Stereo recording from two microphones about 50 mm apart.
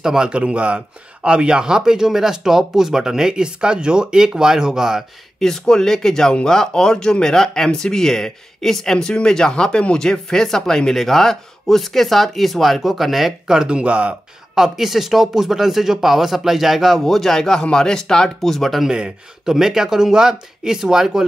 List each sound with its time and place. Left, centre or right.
0.0 s speech: centre
5.4 s speech: centre
13.5 s speech: centre
14.5 s speech: centre
18.9 s speech: centre